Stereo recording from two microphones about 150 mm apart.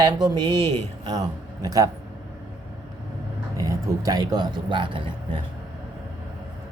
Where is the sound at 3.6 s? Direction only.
20° right (ahead or behind).